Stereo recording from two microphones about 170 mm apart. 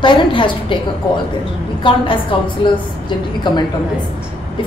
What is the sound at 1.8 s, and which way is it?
A woman's voice, 30° left (ahead or behind).